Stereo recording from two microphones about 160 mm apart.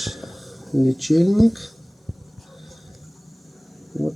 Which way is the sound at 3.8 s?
Centre (ahead or behind).